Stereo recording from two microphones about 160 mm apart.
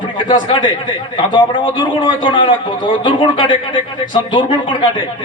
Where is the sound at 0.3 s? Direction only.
30° left (ahead or behind).